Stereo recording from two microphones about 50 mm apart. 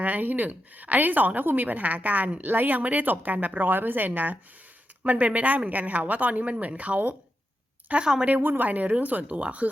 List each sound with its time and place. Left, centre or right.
0.0 s a woman's voice: right
8.0 s a woman's voice: centre
8.3 s a woman's voice: right